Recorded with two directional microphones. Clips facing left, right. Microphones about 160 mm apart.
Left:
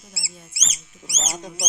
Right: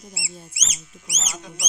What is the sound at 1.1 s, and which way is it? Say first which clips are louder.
Speech: left 4 dB; 30° left (ahead or behind).